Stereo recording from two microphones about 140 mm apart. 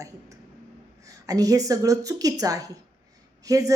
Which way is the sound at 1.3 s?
25° right (ahead or behind).